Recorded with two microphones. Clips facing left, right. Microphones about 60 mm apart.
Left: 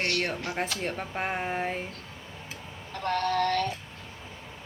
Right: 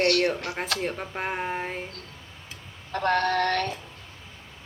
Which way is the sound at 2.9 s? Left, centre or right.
Right.